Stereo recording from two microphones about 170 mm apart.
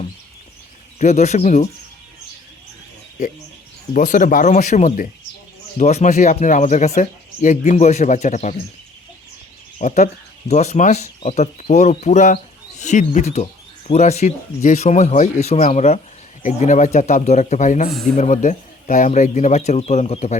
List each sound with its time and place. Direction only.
0.9 s speech: 45° left (ahead or behind)
3.9 s speech: 50° left (ahead or behind)
9.7 s speech: 45° left (ahead or behind)